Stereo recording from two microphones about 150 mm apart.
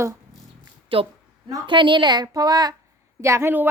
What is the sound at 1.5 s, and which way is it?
A woman's voice, 30° right (ahead or behind).